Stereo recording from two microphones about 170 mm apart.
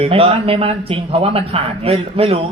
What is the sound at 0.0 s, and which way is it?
A man's voice, 35° right (ahead or behind).